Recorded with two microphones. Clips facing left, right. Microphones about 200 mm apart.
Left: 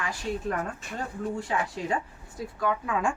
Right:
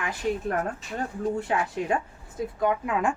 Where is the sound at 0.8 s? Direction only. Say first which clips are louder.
Right 3 dB; 55° left (ahead or behind).